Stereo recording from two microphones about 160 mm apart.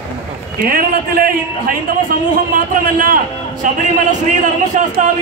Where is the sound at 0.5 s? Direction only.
65° right (ahead or behind).